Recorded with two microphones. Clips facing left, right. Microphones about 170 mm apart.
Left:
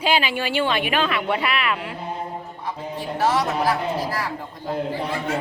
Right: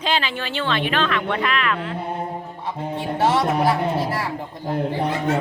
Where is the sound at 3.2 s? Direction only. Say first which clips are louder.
Right 2 dB; 25° right (ahead or behind).